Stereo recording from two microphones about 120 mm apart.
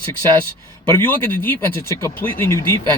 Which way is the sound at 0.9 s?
15° left (ahead or behind).